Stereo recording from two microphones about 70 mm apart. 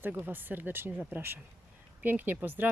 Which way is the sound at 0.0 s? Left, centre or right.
Right.